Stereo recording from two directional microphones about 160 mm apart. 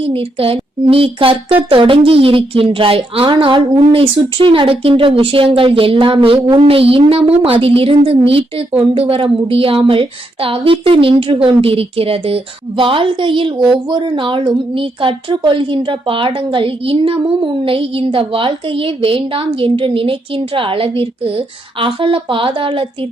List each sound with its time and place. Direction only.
0.0 s a woman's voice: 35° right (ahead or behind)